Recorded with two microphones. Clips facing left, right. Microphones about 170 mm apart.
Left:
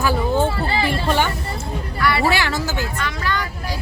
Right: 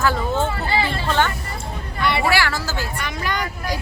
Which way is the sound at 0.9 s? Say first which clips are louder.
Left 1 dB; 15° left (ahead or behind).